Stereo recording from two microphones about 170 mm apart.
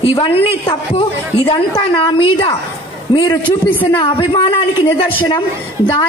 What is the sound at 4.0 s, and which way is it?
A man's voice, 30° left (ahead or behind).